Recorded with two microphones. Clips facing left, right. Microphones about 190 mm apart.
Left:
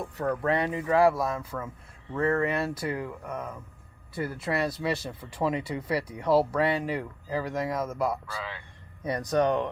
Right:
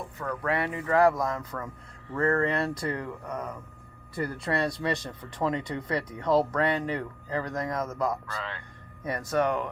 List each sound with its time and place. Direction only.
0.4 s speech: 20° left (ahead or behind)